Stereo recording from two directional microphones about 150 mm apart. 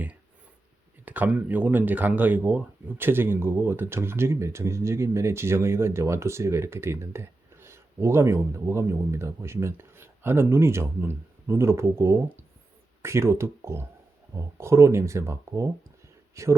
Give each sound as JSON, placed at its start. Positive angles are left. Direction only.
{"t": 1.0, "sound": "speech", "side_deg": -10}